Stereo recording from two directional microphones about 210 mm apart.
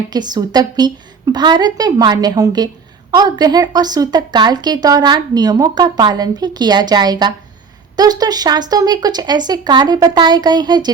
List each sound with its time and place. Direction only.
0.1 s a woman's voice: 20° right (ahead or behind)